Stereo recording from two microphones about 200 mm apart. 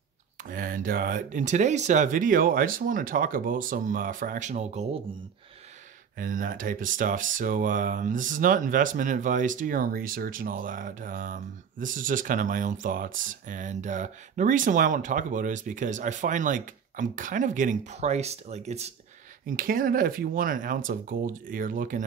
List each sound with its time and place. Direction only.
0.4 s speech: 45° right (ahead or behind)
6.1 s speech: 40° right (ahead or behind)
19.4 s speech: 45° right (ahead or behind)